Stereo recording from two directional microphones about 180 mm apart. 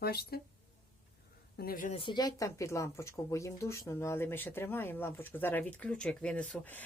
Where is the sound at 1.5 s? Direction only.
55° left (ahead or behind).